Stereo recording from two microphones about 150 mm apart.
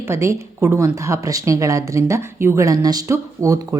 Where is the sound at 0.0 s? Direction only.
20° right (ahead or behind).